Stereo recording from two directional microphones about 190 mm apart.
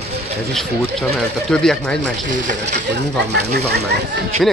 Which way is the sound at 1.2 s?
Centre (ahead or behind).